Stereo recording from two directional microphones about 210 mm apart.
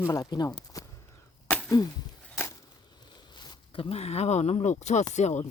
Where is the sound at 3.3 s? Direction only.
20° left (ahead or behind).